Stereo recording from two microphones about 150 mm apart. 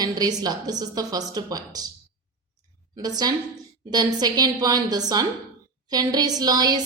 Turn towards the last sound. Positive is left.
turn(degrees=-25)  # may be behind; listen again after turning